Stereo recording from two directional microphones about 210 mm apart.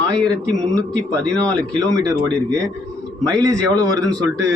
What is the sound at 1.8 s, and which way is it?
A man's voice, 20° right (ahead or behind).